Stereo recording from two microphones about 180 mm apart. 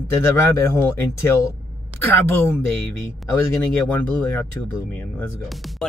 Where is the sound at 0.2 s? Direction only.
15° left (ahead or behind).